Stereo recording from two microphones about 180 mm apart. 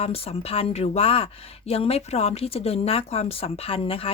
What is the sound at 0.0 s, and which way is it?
Speech, 35° left (ahead or behind).